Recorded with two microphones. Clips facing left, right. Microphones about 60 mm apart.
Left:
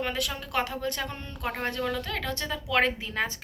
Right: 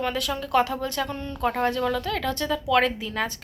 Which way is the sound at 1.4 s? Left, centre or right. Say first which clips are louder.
Right 7 dB; centre.